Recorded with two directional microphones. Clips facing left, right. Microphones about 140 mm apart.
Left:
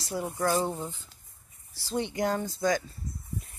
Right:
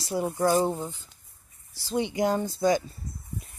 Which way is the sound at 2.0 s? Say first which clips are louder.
Right 3 dB; 15° right (ahead or behind).